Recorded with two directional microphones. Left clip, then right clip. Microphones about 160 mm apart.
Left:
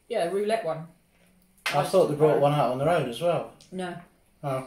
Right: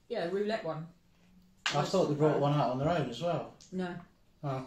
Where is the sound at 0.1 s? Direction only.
20° left (ahead or behind).